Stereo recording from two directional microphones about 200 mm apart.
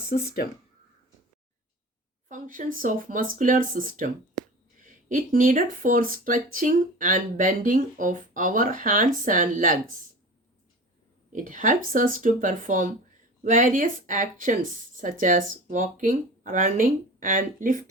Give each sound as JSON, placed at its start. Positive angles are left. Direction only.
{"t": 0.1, "sound": "speech", "side_deg": 45}
{"t": 2.3, "sound": "speech", "side_deg": -40}
{"t": 11.3, "sound": "speech", "side_deg": -40}